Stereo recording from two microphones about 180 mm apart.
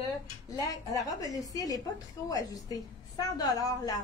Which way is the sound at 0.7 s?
20° left (ahead or behind).